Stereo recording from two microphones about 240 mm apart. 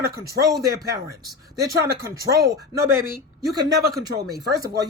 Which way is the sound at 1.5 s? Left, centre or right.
Right.